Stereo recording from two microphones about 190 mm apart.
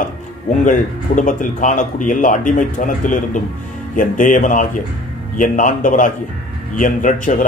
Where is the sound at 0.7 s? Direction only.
45° left (ahead or behind).